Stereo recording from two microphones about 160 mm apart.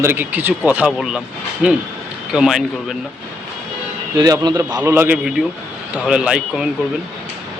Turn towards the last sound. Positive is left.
turn(degrees=-5)  # may be behind; listen again after turning